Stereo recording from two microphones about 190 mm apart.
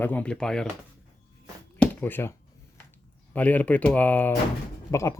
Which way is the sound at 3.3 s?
10° left (ahead or behind).